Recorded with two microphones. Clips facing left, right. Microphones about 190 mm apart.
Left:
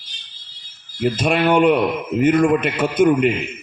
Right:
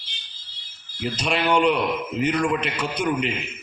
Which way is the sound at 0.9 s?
50° left (ahead or behind).